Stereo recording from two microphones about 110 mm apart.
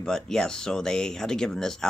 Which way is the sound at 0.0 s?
5° left (ahead or behind).